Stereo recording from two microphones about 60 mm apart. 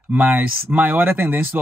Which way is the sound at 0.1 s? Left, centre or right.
Right.